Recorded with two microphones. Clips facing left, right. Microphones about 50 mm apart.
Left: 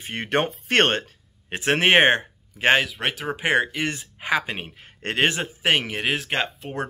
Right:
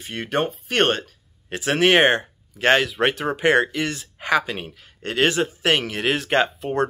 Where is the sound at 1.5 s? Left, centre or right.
Left.